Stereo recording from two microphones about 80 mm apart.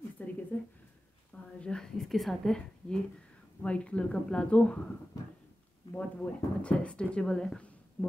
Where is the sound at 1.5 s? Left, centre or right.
Centre.